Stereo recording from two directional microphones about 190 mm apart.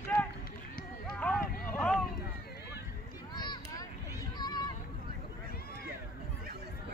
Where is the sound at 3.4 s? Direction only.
20° left (ahead or behind).